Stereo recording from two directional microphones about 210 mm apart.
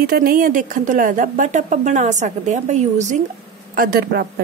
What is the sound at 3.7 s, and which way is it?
Speech, 45° right (ahead or behind).